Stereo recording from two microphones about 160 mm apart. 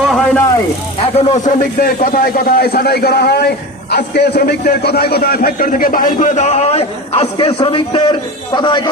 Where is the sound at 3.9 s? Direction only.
90° left.